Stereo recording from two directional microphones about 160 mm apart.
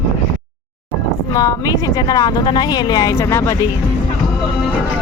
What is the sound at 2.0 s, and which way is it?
Speech, 25° left (ahead or behind).